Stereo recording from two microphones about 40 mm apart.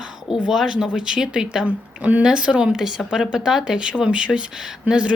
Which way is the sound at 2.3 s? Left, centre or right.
Right.